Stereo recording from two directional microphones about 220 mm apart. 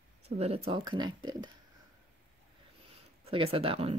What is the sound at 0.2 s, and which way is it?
Speech, 30° right (ahead or behind).